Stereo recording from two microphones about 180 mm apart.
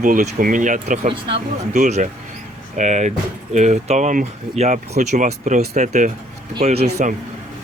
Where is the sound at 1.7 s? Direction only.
45° right (ahead or behind).